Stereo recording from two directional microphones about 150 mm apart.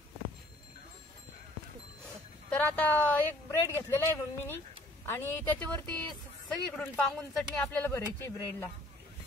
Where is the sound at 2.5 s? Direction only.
10° left (ahead or behind).